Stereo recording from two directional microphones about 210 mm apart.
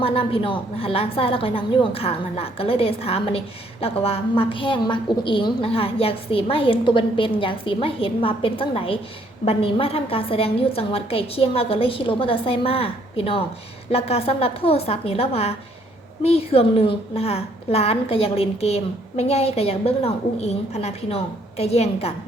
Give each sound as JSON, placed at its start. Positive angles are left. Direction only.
{"t": 0.0, "sound": "a woman's voice", "side_deg": 25}